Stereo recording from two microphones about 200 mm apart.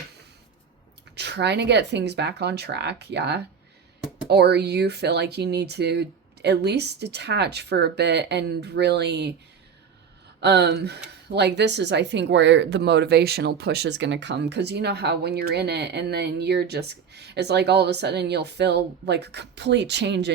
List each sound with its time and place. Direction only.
1.1 s speech: 60° right (ahead or behind)
10.4 s speech: 55° right (ahead or behind)